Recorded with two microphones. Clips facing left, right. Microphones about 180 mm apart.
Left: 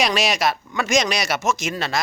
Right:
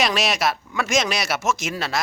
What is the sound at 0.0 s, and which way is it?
Speech, centre (ahead or behind).